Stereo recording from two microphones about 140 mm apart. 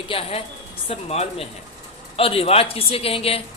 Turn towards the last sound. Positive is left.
turn(degrees=45)  # may be behind; listen again after turning